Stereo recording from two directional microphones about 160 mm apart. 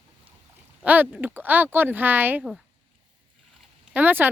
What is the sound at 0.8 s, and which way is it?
Speech, 10° right (ahead or behind).